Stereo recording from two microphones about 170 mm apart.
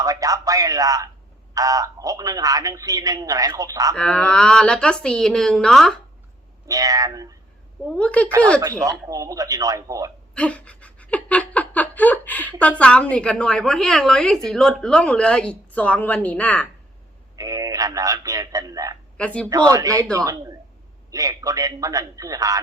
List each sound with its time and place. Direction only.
0.0 s speech: 20° right (ahead or behind)
3.9 s a woman's voice: 5° left (ahead or behind)
6.7 s speech: 20° right (ahead or behind)
7.9 s speech: 5° left (ahead or behind)
8.8 s speech: 20° right (ahead or behind)
10.3 s a sound: 5° left (ahead or behind)
12.8 s a woman's voice: 5° left (ahead or behind)
17.3 s speech: 20° right (ahead or behind)
19.1 s speech: 5° left (ahead or behind)
19.5 s speech: 20° right (ahead or behind)